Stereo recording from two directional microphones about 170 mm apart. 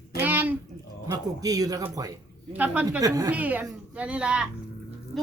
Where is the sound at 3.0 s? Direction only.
20° right (ahead or behind).